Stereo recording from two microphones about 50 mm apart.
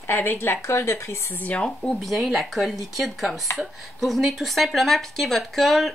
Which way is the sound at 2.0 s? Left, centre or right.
Centre.